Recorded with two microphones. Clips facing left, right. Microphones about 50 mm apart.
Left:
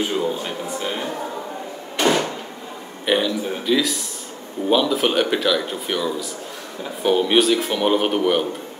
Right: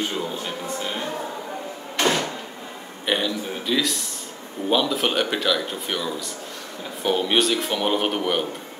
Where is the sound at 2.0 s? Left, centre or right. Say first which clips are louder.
Left 3 dB; centre.